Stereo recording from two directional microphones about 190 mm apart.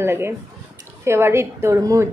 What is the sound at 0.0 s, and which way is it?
A woman's voice, 15° right (ahead or behind).